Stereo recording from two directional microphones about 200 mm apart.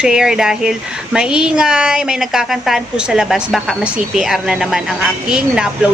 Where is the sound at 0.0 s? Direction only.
5° right (ahead or behind).